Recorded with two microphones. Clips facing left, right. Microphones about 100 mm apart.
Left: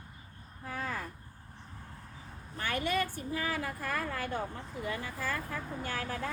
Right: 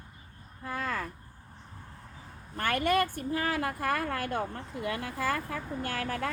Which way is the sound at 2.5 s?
55° right (ahead or behind).